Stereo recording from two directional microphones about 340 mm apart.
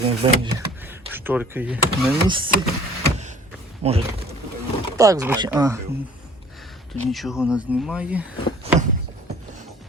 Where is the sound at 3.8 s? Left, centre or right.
Centre.